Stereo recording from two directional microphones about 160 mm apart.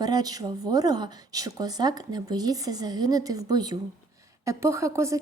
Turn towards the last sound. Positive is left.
turn(degrees=-20)  # may be behind; listen again after turning